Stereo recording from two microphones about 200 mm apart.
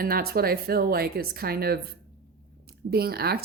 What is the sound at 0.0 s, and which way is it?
Speech, 50° right (ahead or behind).